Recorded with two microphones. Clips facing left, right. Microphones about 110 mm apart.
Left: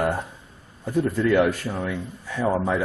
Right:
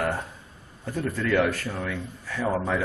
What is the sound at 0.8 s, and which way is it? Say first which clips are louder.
A man's voice: left 6 dB; 15° left (ahead or behind).